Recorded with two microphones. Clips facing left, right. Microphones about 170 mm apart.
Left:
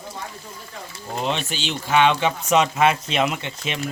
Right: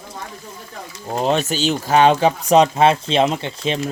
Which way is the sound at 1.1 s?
40° right (ahead or behind).